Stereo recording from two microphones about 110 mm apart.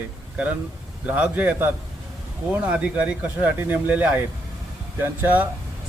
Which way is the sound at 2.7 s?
10° right (ahead or behind).